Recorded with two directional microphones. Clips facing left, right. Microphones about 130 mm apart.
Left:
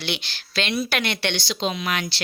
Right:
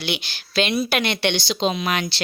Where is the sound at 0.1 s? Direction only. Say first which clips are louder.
Right 4 dB; 10° right (ahead or behind).